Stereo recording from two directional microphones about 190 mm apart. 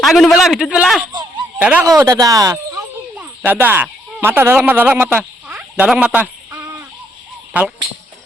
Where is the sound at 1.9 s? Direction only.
20° right (ahead or behind).